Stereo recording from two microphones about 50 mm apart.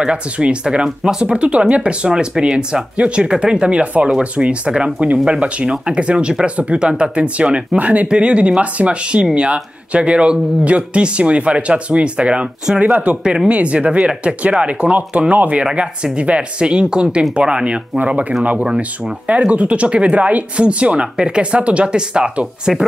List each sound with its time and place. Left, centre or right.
0.0 s speech: centre